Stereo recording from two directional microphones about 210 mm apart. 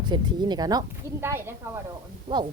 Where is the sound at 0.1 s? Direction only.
20° right (ahead or behind).